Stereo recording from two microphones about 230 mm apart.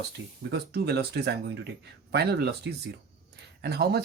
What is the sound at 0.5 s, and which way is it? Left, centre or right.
Speech, right.